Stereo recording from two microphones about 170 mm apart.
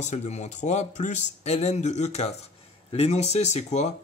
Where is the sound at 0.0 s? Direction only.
40° left (ahead or behind).